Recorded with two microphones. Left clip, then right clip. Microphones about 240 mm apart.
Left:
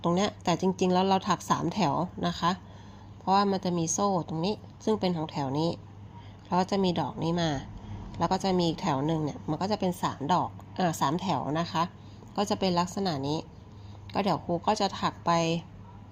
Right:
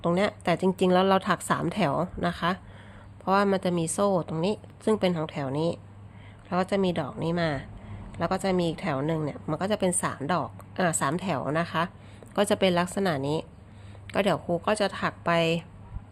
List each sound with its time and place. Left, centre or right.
0.0 s a woman's voice: centre